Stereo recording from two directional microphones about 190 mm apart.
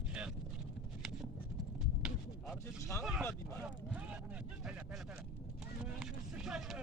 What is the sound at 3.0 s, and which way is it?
Speech, centre (ahead or behind).